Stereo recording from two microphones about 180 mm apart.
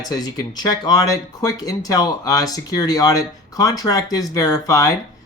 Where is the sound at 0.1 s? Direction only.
20° left (ahead or behind).